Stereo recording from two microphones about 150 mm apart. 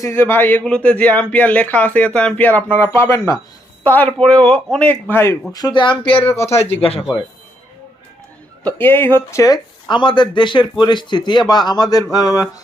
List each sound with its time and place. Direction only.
0.0 s speech: 15° left (ahead or behind)
5.5 s speech: 30° left (ahead or behind)
6.3 s speech: 15° left (ahead or behind)
6.7 s speech: 40° left (ahead or behind)
8.6 s speech: 15° left (ahead or behind)